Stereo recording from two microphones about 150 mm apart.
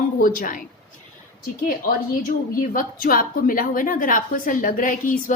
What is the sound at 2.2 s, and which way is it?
A woman's voice, 65° left (ahead or behind).